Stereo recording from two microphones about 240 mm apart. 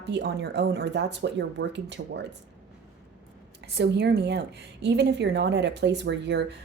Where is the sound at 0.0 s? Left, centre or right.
Right.